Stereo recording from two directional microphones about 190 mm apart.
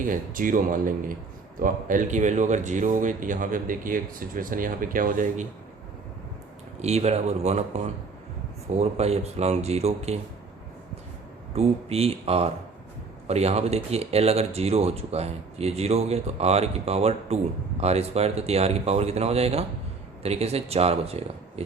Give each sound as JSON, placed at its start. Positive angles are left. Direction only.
{"t": 0.0, "sound": "speech", "side_deg": -45}
{"t": 6.7, "sound": "speech", "side_deg": -35}
{"t": 11.5, "sound": "speech", "side_deg": -30}